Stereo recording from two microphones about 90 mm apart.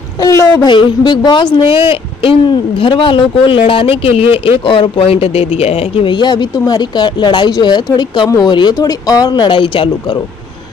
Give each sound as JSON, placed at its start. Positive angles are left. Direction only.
{"t": 0.2, "sound": "a woman's voice", "side_deg": 35}
{"t": 0.7, "sound": "a woman's voice", "side_deg": 55}
{"t": 1.9, "sound": "speech", "side_deg": 80}
{"t": 2.5, "sound": "speech", "side_deg": 65}
{"t": 6.1, "sound": "speech", "side_deg": 55}
{"t": 8.7, "sound": "speech", "side_deg": 40}